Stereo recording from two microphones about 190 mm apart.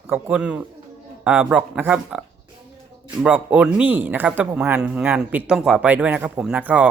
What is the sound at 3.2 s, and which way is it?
Speech, 10° right (ahead or behind).